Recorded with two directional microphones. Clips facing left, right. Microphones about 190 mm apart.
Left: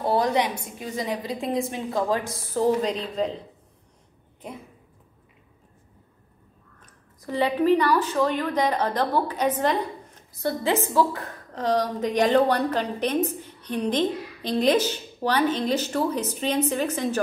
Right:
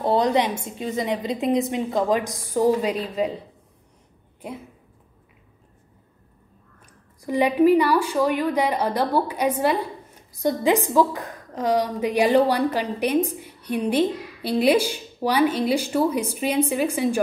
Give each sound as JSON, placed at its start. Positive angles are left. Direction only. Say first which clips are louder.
{"t": 0.0, "sound": "a woman's voice", "louder": "right 2 dB", "side_deg": -20}
{"t": 6.8, "sound": "a woman's voice", "louder": "right 4 dB", "side_deg": -15}